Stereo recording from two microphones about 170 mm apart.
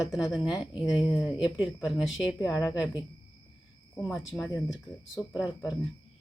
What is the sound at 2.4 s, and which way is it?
Speech, 20° left (ahead or behind).